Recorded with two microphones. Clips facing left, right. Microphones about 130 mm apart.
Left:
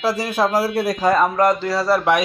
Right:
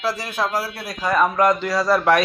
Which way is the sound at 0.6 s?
45° left (ahead or behind).